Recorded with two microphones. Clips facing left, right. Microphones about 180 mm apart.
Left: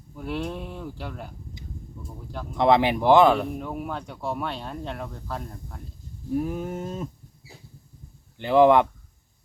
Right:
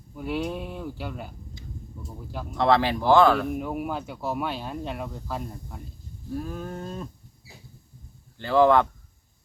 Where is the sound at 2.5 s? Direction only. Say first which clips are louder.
Left 2 dB; 20° left (ahead or behind).